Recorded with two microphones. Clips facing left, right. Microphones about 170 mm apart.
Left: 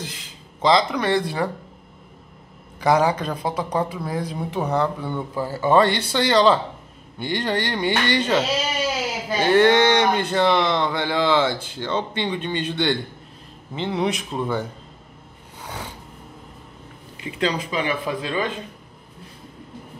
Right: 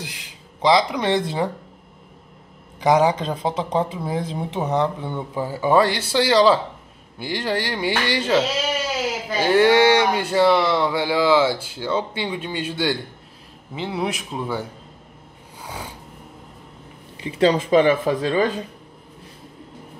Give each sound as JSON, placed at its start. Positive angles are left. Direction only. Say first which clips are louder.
{"t": 0.0, "sound": "speech", "louder": "left 1 dB", "side_deg": -15}
{"t": 2.8, "sound": "speech", "louder": "right 2 dB", "side_deg": -20}
{"t": 5.8, "sound": "speech", "louder": "even", "side_deg": -5}
{"t": 15.6, "sound": "a sound", "louder": "even", "side_deg": -10}
{"t": 17.6, "sound": "speech", "louder": "right 9 dB", "side_deg": -45}